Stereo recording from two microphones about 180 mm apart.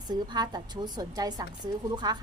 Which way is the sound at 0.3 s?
25° right (ahead or behind).